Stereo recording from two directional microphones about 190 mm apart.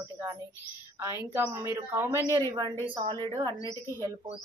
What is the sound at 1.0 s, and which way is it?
Speech, 10° right (ahead or behind).